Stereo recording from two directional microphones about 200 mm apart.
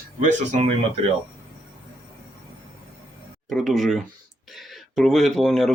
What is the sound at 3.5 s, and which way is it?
Speech, centre (ahead or behind).